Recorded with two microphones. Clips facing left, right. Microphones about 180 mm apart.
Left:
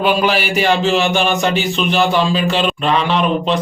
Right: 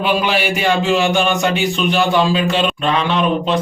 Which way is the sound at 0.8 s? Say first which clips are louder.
Even; centre (ahead or behind).